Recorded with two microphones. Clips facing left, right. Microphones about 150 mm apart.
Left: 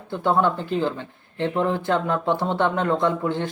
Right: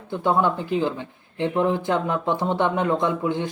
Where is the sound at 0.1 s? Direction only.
15° right (ahead or behind).